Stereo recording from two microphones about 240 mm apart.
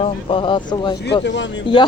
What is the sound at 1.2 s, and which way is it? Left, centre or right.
Speech, left.